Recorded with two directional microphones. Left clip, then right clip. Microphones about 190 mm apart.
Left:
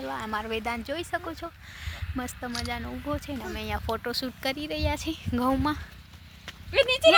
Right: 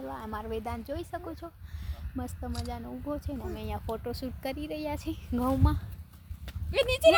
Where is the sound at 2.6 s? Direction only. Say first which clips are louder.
Left 5 dB; 5° left (ahead or behind).